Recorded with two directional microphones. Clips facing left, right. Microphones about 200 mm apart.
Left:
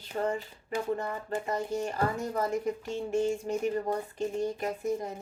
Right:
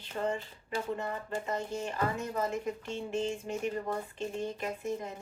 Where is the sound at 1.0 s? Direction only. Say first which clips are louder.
Left 2 dB; 35° left (ahead or behind).